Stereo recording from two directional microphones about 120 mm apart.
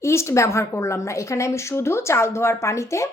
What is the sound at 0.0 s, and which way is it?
Speech, 20° left (ahead or behind).